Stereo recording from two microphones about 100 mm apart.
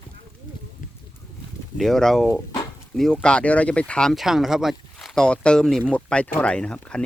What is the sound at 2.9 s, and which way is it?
Speech, 5° left (ahead or behind).